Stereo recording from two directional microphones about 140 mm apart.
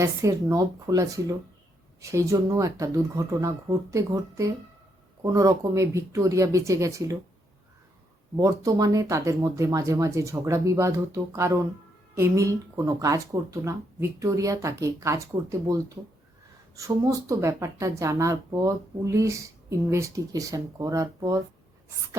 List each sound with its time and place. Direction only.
0.0 s a woman's voice: 20° right (ahead or behind)
8.4 s a woman's voice: 25° right (ahead or behind)